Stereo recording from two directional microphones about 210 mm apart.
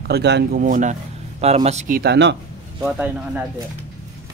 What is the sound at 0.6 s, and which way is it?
Speech, 35° right (ahead or behind).